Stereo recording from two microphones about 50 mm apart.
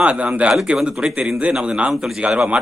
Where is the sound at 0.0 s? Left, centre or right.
Right.